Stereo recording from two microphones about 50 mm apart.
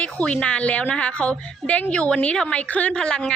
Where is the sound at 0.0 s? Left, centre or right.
Left.